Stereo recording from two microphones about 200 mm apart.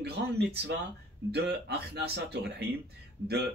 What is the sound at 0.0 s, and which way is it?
Speech, 55° right (ahead or behind).